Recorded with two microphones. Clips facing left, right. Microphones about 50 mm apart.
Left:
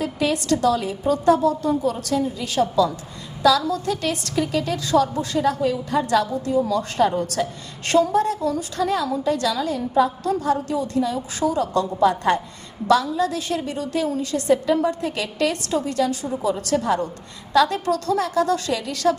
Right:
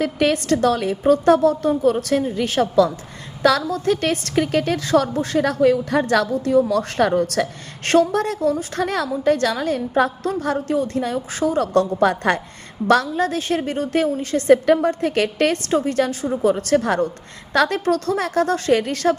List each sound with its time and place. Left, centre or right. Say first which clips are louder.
0.0 s a woman's voice: right 4 dB; right
12.9 s a woman's voice: right 1 dB; right
14.7 s a woman's voice: right 4 dB; right